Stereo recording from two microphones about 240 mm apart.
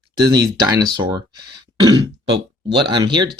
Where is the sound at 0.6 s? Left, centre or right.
Centre.